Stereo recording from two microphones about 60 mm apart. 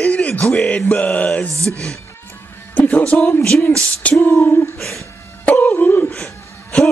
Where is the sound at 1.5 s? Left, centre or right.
Right.